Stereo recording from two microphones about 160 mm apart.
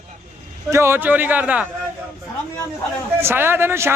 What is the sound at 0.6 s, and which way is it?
A man's voice, 15° right (ahead or behind).